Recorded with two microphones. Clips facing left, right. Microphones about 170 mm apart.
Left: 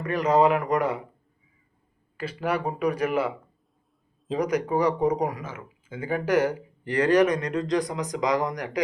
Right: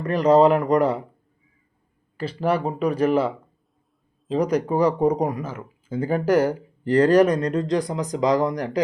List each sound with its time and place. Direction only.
0.0 s speech: 35° right (ahead or behind)
2.1 s speech: 30° right (ahead or behind)
4.4 s speech: 30° right (ahead or behind)